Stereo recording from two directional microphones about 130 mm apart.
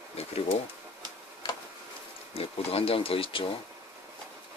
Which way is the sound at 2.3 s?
50° left (ahead or behind).